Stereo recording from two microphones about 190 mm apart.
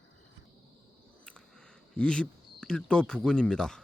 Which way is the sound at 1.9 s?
5° left (ahead or behind).